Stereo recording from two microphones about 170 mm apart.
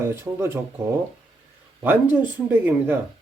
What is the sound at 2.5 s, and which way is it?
Speech, 15° right (ahead or behind).